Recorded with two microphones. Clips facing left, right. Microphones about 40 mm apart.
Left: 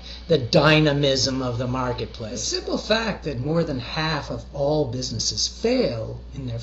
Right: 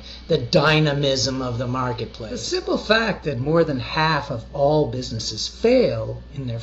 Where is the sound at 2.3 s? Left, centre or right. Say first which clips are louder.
Right 4 dB; right.